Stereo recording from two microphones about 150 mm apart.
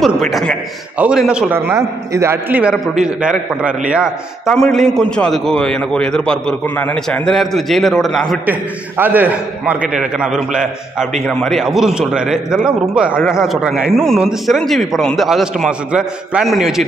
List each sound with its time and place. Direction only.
0.0 s a man's voice: centre (ahead or behind); by 2.6 s 15° right (ahead or behind)
2.6 s a man's voice: 5° right (ahead or behind)
8.5 s a man's voice: 15° right (ahead or behind)